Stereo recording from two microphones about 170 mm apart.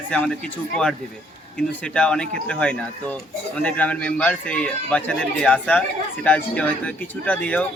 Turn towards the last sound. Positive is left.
turn(degrees=10)  # may be behind; listen again after turning